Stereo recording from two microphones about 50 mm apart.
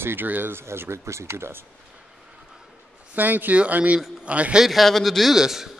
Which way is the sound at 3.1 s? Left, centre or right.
Right.